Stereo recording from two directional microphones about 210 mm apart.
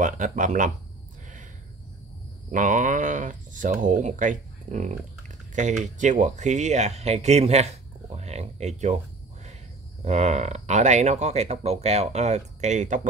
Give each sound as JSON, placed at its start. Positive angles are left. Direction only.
{"t": 0.0, "sound": "speech", "side_deg": -40}
{"t": 2.5, "sound": "speech", "side_deg": -40}
{"t": 10.0, "sound": "speech", "side_deg": -30}